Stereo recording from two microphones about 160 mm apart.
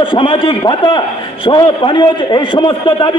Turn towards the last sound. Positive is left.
turn(degrees=30)  # may be behind; listen again after turning